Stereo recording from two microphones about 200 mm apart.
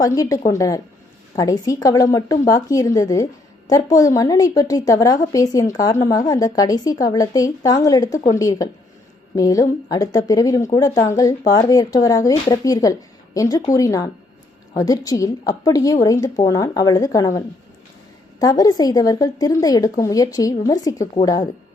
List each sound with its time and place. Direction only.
0.0 s a woman's voice: 15° left (ahead or behind)